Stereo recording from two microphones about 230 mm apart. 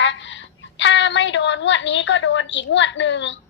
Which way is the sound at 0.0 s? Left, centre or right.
Left.